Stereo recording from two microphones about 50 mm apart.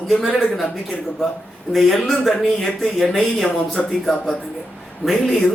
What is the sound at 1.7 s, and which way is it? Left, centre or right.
Speech, centre.